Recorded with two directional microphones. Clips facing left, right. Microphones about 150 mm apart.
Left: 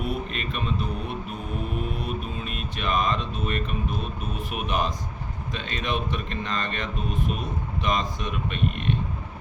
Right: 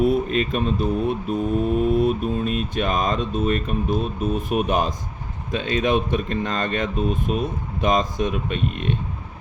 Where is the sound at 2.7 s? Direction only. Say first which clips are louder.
Left 2 dB; 45° right (ahead or behind).